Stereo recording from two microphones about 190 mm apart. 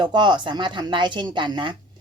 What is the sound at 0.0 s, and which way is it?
Speech, 25° right (ahead or behind).